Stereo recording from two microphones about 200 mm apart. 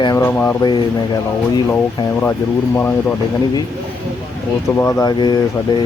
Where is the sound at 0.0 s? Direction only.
20° left (ahead or behind).